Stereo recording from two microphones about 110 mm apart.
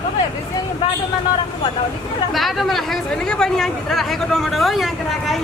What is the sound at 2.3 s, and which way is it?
Speech, centre (ahead or behind).